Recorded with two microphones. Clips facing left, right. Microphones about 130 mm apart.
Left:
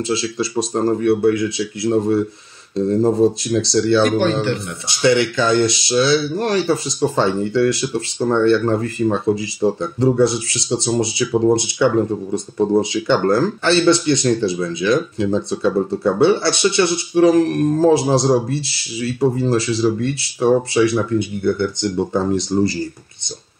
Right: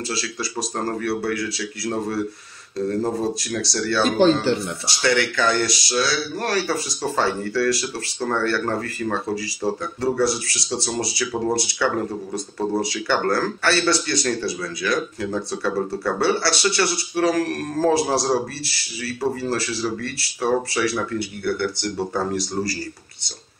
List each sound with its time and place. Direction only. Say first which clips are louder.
0.1 s speech: left 8 dB; 25° left (ahead or behind)
4.0 s speech: left 1 dB; 30° right (ahead or behind)
4.8 s speech: left 7 dB; 20° left (ahead or behind)